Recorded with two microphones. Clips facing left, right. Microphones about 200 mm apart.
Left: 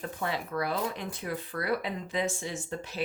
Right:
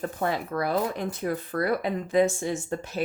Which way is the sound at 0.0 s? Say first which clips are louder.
Right 5 dB; 45° right (ahead or behind).